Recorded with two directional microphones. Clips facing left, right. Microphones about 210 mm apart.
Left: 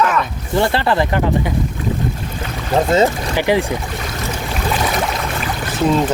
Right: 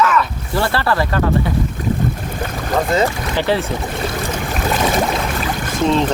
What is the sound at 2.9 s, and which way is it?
Speech, 15° left (ahead or behind).